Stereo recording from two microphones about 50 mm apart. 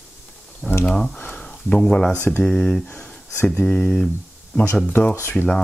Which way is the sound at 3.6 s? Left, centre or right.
Left.